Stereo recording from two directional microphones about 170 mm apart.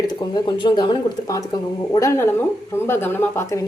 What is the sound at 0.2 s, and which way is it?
Speech, 25° left (ahead or behind).